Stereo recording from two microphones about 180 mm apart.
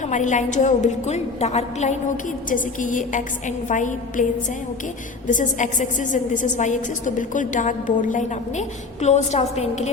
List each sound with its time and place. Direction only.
0.1 s a woman's voice: 45° left (ahead or behind)
5.3 s a woman's voice: 45° left (ahead or behind)